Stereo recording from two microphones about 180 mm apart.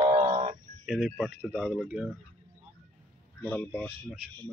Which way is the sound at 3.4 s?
10° left (ahead or behind).